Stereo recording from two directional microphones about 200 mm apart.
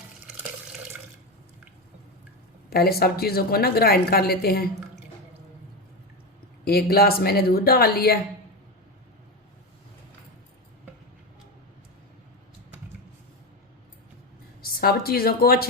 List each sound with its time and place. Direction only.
2.6 s a woman's voice: 50° left (ahead or behind)
6.7 s a woman's voice: 50° left (ahead or behind)
14.6 s a woman's voice: 50° left (ahead or behind)